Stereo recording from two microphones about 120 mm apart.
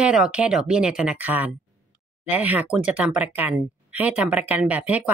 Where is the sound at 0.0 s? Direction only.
10° right (ahead or behind).